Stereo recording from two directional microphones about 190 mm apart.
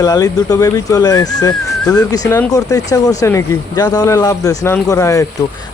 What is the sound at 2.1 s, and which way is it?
Speech, 20° left (ahead or behind).